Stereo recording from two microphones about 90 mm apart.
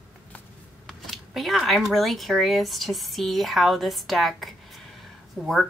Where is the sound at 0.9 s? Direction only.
Centre (ahead or behind).